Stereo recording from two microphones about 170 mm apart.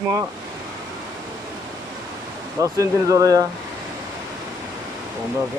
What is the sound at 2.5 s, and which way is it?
Speech, 20° right (ahead or behind).